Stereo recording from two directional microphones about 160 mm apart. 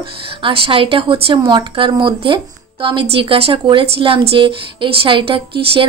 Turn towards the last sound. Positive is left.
turn(degrees=-35)  # may be behind; listen again after turning